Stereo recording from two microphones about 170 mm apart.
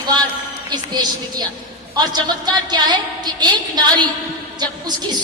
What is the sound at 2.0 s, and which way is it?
A woman's voice, 25° right (ahead or behind).